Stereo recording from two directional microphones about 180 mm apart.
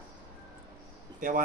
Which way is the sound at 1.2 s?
50° right (ahead or behind).